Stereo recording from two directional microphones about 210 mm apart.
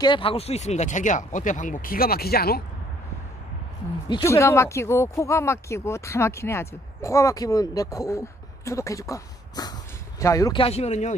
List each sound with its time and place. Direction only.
0.0 s speech: 25° left (ahead or behind); by 2.6 s 45° left (ahead or behind)
4.2 s speech: 10° left (ahead or behind); by 11.1 s 35° left (ahead or behind)